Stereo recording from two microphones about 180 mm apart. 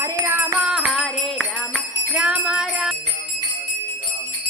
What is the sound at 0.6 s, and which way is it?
Music, 5° right (ahead or behind).